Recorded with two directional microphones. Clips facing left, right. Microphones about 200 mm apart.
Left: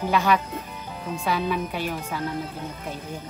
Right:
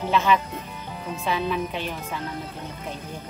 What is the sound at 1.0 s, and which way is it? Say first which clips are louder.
Speech: left 1 dB; centre (ahead or behind).